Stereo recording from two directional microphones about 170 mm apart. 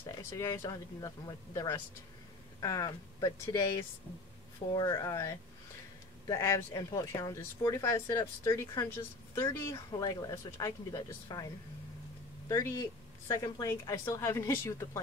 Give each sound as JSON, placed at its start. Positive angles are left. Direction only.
{"t": 0.0, "sound": "speech", "side_deg": 20}
{"t": 4.7, "sound": "a woman's voice", "side_deg": 20}
{"t": 12.4, "sound": "a woman's voice", "side_deg": 20}